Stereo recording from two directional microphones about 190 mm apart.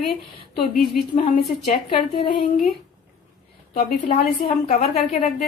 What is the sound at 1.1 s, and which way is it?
A woman's voice, 30° left (ahead or behind).